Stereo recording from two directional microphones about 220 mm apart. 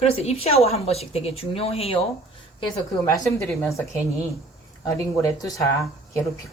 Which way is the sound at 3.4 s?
10° left (ahead or behind).